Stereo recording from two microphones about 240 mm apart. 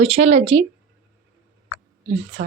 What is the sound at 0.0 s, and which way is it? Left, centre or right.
Speech, right.